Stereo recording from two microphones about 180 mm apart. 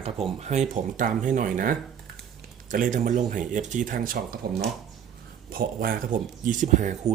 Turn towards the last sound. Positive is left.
turn(degrees=-45)  # may be behind; listen again after turning